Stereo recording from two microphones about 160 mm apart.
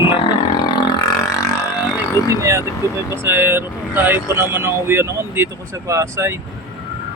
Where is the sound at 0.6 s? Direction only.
25° left (ahead or behind).